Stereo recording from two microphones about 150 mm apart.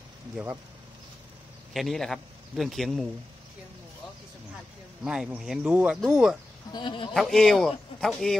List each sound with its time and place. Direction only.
1.7 s a man's voice: centre (ahead or behind)
5.0 s a man's voice: 5° right (ahead or behind)
6.7 s speech: 30° left (ahead or behind)
7.2 s a man's voice: centre (ahead or behind)